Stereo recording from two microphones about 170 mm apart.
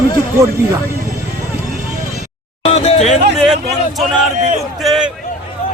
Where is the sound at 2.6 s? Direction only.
35° left (ahead or behind).